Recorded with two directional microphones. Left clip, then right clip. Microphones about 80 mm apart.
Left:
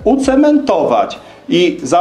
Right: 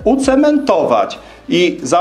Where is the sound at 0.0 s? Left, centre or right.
Right.